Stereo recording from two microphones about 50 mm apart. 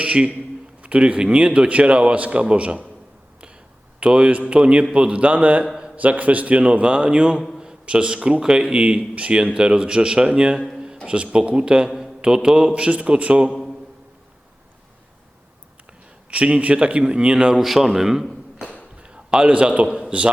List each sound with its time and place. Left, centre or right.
0.0 s a man's voice: right
4.0 s a man's voice: right
13.5 s a sound: centre
16.3 s a man's voice: right; by 18.7 s centre
18.9 s a man's voice: centre